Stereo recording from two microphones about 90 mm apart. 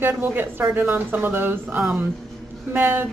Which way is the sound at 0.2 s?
25° right (ahead or behind).